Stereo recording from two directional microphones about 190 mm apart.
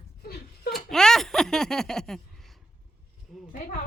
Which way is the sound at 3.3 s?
Centre (ahead or behind).